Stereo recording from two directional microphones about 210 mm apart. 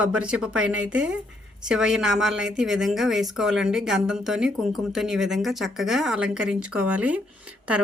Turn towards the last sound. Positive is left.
turn(degrees=-5)  # may be behind; listen again after turning